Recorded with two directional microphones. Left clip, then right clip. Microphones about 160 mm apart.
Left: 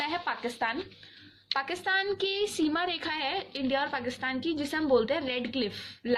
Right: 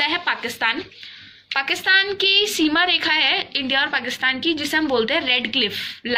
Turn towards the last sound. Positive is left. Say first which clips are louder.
# right 11 dB
turn(degrees=40)  # may be behind; listen again after turning